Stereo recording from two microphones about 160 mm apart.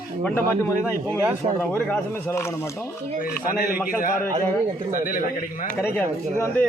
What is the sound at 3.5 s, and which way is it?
Speech, 60° left (ahead or behind).